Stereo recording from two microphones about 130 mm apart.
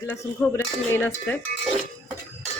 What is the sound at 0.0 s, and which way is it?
Frying, 20° left (ahead or behind).